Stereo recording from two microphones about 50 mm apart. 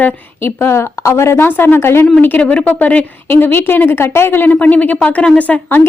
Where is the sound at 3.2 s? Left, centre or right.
Left.